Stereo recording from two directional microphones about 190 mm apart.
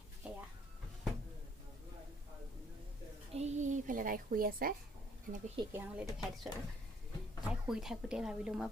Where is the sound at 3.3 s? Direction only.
35° right (ahead or behind).